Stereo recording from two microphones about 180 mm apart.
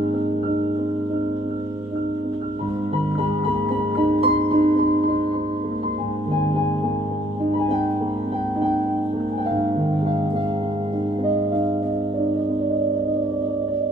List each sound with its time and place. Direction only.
4.2 s music: 35° right (ahead or behind)